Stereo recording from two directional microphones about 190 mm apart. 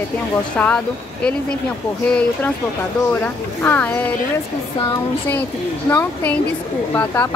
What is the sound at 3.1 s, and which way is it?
Speech, 10° left (ahead or behind).